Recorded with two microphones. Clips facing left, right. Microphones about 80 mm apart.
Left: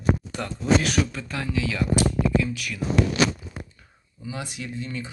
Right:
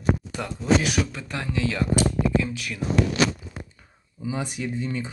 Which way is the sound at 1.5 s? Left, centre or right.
Right.